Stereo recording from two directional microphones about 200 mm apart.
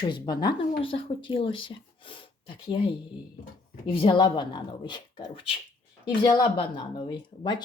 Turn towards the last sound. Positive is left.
turn(degrees=20)  # may be behind; listen again after turning